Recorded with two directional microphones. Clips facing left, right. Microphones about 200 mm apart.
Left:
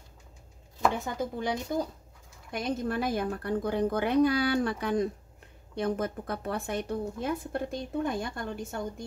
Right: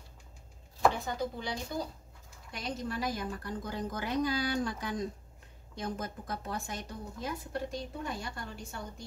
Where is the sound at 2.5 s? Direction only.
55° left (ahead or behind).